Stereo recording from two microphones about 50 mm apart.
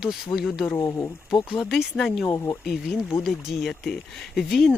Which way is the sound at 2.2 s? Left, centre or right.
Left.